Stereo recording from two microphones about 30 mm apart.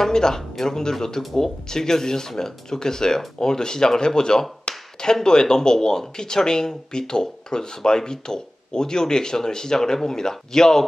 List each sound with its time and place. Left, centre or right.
0.0 s speech: centre
4.7 s a sound: left
5.0 s speech: left